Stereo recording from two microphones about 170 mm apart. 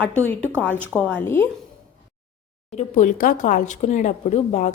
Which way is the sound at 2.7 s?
45° left (ahead or behind).